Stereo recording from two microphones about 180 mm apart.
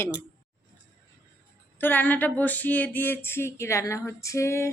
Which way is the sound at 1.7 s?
10° left (ahead or behind).